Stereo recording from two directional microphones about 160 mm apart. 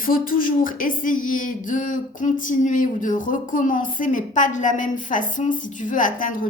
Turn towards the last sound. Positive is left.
turn(degrees=55)  # may be behind; listen again after turning